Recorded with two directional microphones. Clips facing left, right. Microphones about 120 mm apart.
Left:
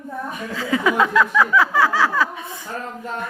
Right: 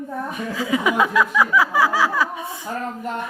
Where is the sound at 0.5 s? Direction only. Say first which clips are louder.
Left 1 dB; 15° right (ahead or behind).